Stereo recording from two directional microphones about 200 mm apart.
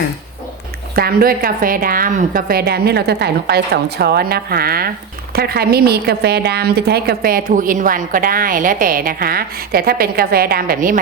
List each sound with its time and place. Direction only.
0.9 s a woman's voice: 50° right (ahead or behind)